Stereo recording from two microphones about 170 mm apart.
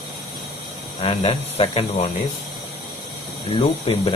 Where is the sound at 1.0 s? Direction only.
35° left (ahead or behind).